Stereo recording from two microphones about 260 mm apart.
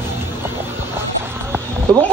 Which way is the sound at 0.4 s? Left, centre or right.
Centre.